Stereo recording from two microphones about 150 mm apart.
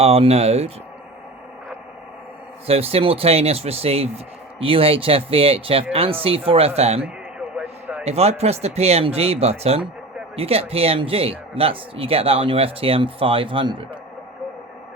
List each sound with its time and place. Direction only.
0.0 s speech: 40° right (ahead or behind)
2.6 s speech: 40° right (ahead or behind)
7.0 s a sound: 10° right (ahead or behind)
8.0 s speech: 45° right (ahead or behind)